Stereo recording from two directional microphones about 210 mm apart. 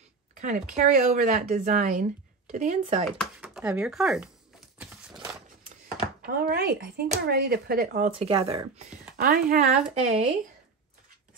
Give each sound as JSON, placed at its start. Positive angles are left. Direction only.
{"t": 0.3, "sound": "a sound", "side_deg": -35}
{"t": 0.7, "sound": "speech", "side_deg": -35}
{"t": 3.1, "sound": "a sound", "side_deg": 0}
{"t": 6.2, "sound": "speech", "side_deg": -45}
{"t": 8.2, "sound": "speech", "side_deg": -25}
{"t": 8.7, "sound": "speech", "side_deg": -40}
{"t": 9.9, "sound": "speech", "side_deg": -30}